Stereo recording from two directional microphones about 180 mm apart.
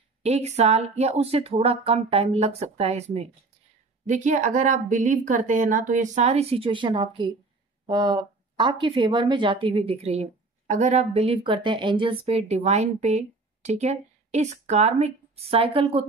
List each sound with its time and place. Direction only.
0.2 s a woman's voice: 35° right (ahead or behind)